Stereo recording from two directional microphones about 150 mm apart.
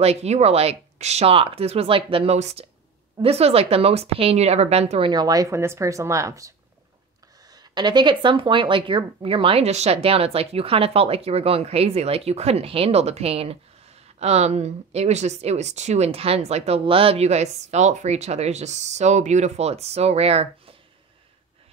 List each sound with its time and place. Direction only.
0.0 s speech: 45° right (ahead or behind)
5.1 s speech: 25° right (ahead or behind)
7.5 s speech: 30° right (ahead or behind)